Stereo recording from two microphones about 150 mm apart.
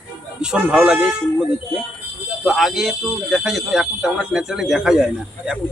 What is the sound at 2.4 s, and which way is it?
Speech, centre (ahead or behind).